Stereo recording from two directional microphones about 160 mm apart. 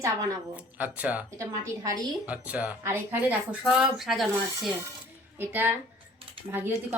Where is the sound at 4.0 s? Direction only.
Centre (ahead or behind).